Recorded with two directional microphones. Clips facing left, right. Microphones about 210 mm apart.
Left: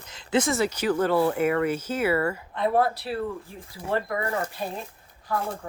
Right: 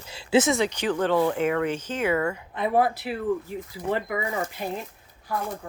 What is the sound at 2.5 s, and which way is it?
Speech, 15° right (ahead or behind).